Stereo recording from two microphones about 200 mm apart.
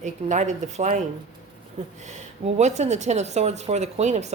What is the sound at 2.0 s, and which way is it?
Speech, 35° right (ahead or behind).